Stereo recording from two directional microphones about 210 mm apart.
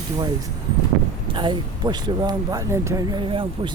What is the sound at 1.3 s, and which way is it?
Speech, 20° right (ahead or behind).